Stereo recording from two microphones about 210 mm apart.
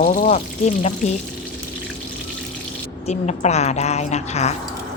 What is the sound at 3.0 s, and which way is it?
Speech, 30° left (ahead or behind).